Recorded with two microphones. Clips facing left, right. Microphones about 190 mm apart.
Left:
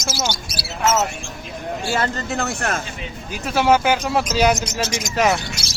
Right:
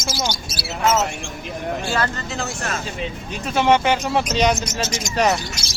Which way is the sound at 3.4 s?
5° left (ahead or behind).